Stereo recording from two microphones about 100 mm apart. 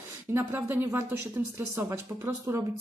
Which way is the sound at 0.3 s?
20° right (ahead or behind).